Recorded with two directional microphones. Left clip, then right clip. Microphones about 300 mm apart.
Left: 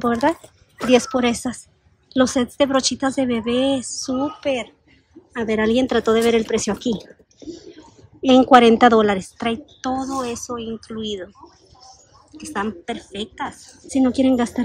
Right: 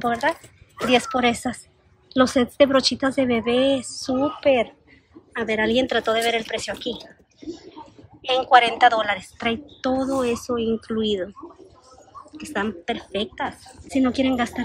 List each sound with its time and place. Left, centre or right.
0.0 s a woman's voice: centre
8.2 s a woman's voice: left; by 11.3 s centre
12.4 s a woman's voice: centre